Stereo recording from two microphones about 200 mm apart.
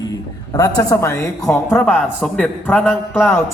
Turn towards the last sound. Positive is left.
turn(degrees=10)  # may be behind; listen again after turning